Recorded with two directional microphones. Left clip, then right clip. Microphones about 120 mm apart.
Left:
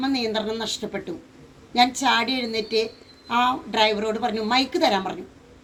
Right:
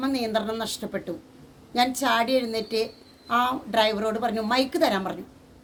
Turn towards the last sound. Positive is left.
turn(degrees=-40)  # may be behind; listen again after turning